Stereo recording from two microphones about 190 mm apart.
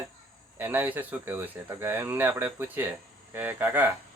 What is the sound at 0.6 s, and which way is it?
Speech, 10° right (ahead or behind).